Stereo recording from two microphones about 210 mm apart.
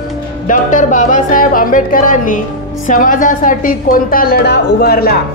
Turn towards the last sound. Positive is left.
turn(degrees=50)  # may be behind; listen again after turning